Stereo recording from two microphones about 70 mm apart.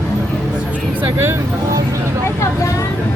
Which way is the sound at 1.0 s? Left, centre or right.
Right.